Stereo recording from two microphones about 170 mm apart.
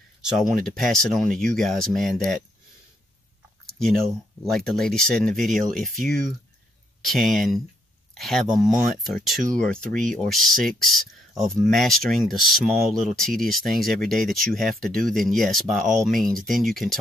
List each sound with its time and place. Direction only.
0.6 s speech: centre (ahead or behind)
3.8 s speech: centre (ahead or behind)